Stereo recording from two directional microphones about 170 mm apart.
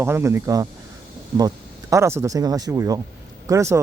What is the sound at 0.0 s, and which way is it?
Speech, 15° right (ahead or behind).